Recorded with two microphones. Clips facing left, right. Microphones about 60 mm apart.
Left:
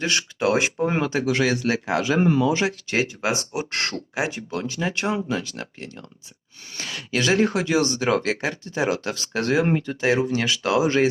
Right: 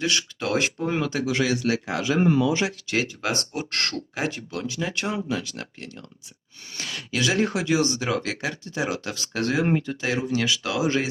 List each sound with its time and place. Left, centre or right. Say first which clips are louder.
0.0 s speech: left 1 dB; left
0.3 s speech: left 4 dB; centre
0.9 s speech: left 2 dB; left
1.3 s speech: left 1 dB; left
3.5 s speech: left 2 dB; centre
4.5 s speech: left 2 dB; left